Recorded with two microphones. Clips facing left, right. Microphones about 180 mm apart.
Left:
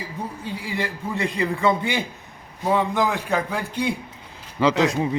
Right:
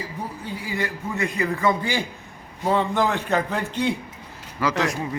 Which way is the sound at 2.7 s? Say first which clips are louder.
Even; 10° left (ahead or behind).